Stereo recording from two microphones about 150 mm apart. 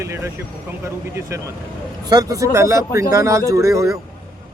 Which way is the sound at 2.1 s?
25° right (ahead or behind).